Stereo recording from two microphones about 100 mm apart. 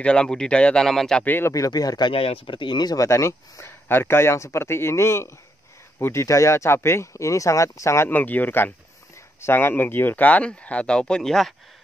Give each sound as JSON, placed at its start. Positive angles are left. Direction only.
{"t": 0.0, "sound": "speech", "side_deg": 10}
{"t": 1.2, "sound": "speech", "side_deg": 20}
{"t": 1.5, "sound": "speech", "side_deg": 35}
{"t": 2.0, "sound": "speech", "side_deg": 70}
{"t": 3.1, "sound": "speech", "side_deg": 30}